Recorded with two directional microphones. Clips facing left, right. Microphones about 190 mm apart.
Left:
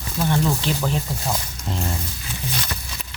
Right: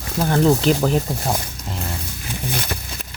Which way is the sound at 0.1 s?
50° right (ahead or behind).